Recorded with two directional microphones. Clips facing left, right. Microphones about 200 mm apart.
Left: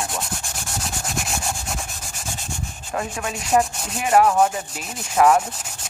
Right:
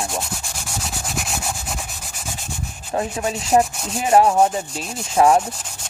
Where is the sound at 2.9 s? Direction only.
25° right (ahead or behind).